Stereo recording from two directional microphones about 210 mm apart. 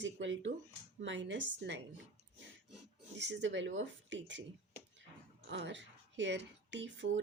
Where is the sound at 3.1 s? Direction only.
55° right (ahead or behind).